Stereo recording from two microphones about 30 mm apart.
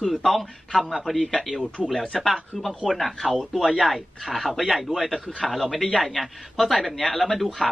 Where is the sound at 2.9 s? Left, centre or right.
Centre.